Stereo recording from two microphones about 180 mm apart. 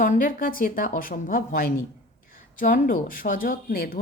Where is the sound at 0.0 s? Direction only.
50° left (ahead or behind).